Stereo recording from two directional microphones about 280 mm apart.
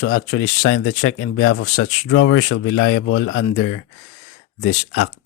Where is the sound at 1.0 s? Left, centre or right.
Left.